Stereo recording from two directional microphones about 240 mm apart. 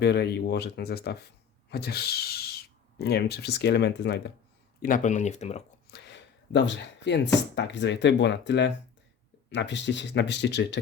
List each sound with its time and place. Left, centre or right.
0.0 s speech: left
4.8 s speech: left
5.9 s a sound: left
7.5 s speech: left